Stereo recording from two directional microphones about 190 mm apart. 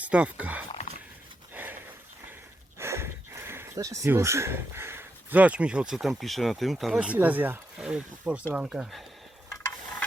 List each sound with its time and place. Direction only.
0.0 s speech: 5° right (ahead or behind)
0.7 s dog: 35° left (ahead or behind)
2.7 s speech: 15° right (ahead or behind)